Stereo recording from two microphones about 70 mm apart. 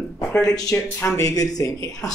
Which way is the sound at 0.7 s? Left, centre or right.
Left.